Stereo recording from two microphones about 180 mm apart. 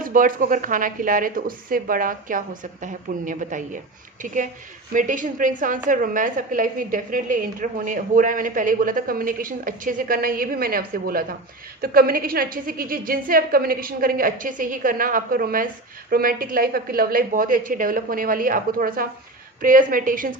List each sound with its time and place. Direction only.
0.0 s a woman's voice: 50° right (ahead or behind)
4.9 s a woman's voice: 45° right (ahead or behind)